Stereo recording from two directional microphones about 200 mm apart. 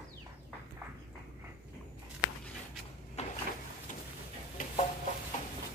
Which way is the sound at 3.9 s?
40° left (ahead or behind).